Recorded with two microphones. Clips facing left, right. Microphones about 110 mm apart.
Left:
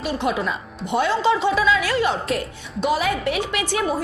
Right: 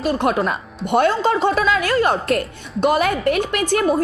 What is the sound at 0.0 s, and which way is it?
A woman's voice, 50° right (ahead or behind).